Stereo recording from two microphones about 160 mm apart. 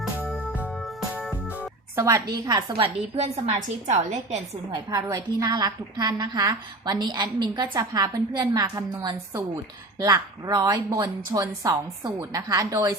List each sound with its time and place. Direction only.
0.0 s music: centre (ahead or behind)
2.0 s a woman's voice: 20° right (ahead or behind); by 4.4 s 45° right (ahead or behind)
4.7 s a woman's voice: 20° right (ahead or behind)